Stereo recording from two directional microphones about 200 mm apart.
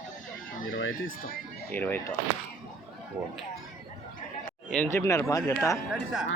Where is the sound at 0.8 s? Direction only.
75° left (ahead or behind).